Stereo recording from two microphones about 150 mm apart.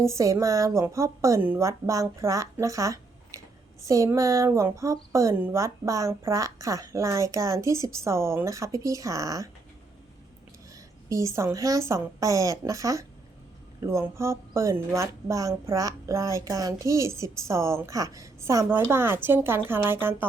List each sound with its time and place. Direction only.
0.0 s speech: 20° right (ahead or behind)
10.8 s speech: 20° right (ahead or behind)